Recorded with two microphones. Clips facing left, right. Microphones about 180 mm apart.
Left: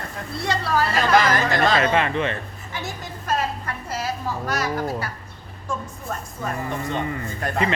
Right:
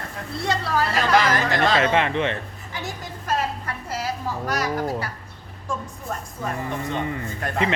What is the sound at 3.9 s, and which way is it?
Speech, 15° right (ahead or behind).